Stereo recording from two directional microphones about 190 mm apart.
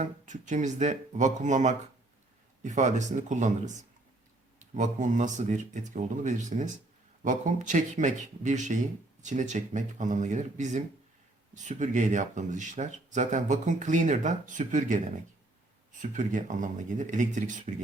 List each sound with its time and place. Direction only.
0.0 s speech: 40° right (ahead or behind)